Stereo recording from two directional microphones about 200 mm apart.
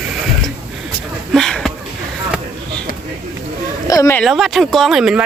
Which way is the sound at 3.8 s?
15° left (ahead or behind).